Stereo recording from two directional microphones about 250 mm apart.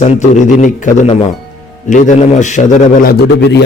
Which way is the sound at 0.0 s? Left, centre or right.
Left.